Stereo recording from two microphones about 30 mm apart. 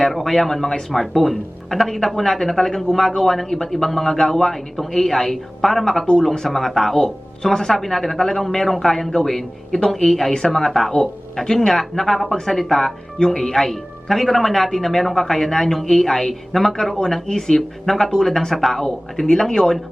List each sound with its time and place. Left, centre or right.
0.1 s speech: centre
17.2 s speech: left
17.5 s speech: centre
18.3 s speech: centre